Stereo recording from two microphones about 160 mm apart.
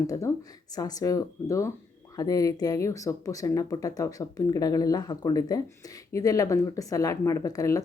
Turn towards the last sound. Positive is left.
turn(degrees=20)  # may be behind; listen again after turning